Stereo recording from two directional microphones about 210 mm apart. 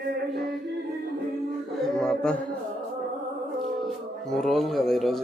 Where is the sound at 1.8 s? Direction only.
5° left (ahead or behind).